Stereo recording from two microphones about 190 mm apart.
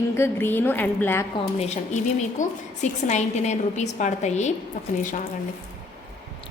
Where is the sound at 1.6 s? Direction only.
35° left (ahead or behind).